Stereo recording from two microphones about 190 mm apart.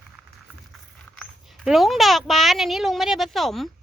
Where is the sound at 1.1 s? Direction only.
Centre (ahead or behind).